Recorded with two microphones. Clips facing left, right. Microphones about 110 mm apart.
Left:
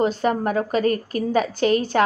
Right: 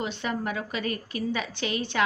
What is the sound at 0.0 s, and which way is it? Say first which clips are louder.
A woman's voice: left 10 dB; 40° left (ahead or behind).